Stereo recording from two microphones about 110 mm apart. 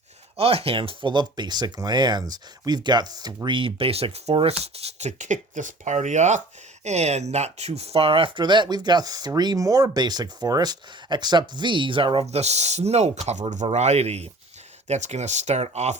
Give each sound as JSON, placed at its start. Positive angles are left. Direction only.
{"t": 0.3, "sound": "speech", "side_deg": -65}
{"t": 12.2, "sound": "speech", "side_deg": -80}
{"t": 14.8, "sound": "speech", "side_deg": -90}